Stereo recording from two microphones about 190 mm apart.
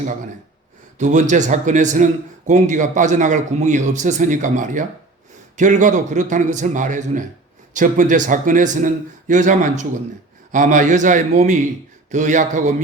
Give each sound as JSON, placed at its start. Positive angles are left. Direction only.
{"t": 0.9, "sound": "a man's voice", "side_deg": -40}